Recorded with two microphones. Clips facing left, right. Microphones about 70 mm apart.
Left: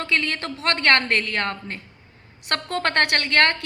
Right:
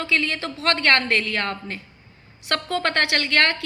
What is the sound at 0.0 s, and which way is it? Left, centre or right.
A woman's voice, left.